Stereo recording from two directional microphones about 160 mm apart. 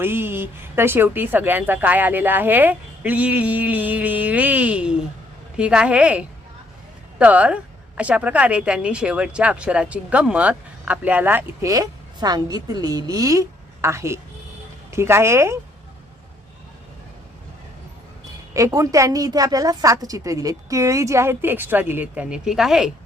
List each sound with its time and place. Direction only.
0.0 s a woman's voice: 15° right (ahead or behind)
18.5 s a woman's voice: 20° right (ahead or behind); by 22.9 s 5° right (ahead or behind)